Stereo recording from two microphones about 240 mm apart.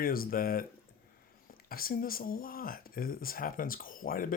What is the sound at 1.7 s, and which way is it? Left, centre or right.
Speech, left.